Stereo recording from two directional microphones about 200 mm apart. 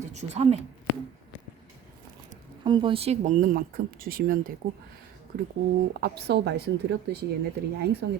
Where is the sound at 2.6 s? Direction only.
25° right (ahead or behind); by 4.5 s 45° right (ahead or behind).